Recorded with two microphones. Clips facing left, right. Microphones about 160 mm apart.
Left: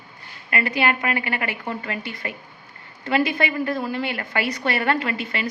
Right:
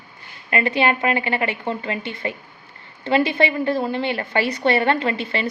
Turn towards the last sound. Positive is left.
turn(degrees=-30)  # may be behind; listen again after turning